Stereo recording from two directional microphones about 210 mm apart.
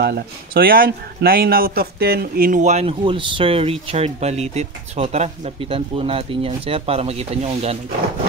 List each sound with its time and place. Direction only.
0.0 s speech: 50° right (ahead or behind); by 7.8 s 30° right (ahead or behind)